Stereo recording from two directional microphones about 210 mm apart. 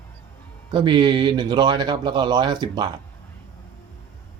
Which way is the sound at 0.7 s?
20° right (ahead or behind).